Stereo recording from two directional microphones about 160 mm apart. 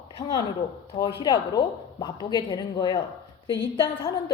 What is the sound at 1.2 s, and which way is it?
A woman's voice, 25° left (ahead or behind).